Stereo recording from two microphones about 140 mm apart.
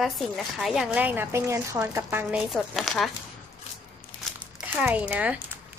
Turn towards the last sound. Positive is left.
turn(degrees=-10)  # may be behind; listen again after turning